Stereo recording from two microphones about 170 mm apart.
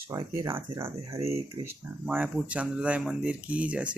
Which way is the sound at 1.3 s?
35° right (ahead or behind).